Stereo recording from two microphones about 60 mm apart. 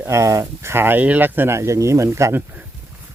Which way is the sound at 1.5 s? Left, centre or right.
Right.